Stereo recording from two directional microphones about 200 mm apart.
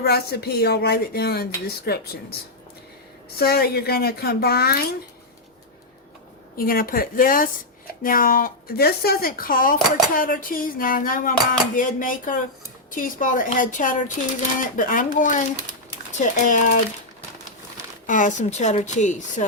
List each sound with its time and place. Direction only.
0.0 s speech: 50° left (ahead or behind)
3.3 s speech: 50° left (ahead or behind)
6.6 s a woman's voice: 45° left (ahead or behind)
18.0 s a woman's voice: 40° left (ahead or behind)